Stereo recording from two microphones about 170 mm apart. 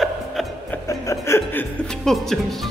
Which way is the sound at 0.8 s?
20° left (ahead or behind).